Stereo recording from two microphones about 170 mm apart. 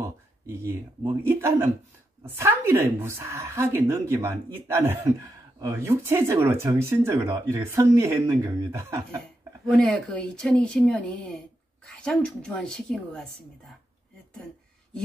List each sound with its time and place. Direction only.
0.0 s speech: 15° right (ahead or behind)
9.7 s speech: 5° left (ahead or behind)